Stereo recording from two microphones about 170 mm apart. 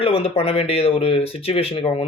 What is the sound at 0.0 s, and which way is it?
Speech, 35° left (ahead or behind).